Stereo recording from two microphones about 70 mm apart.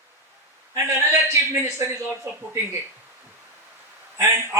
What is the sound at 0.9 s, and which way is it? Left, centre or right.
Speech, right.